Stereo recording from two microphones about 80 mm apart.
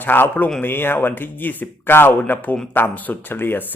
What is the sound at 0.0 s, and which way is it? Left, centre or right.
Speech, left.